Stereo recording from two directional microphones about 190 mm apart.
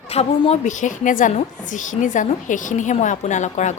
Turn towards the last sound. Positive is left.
turn(degrees=40)  # may be behind; listen again after turning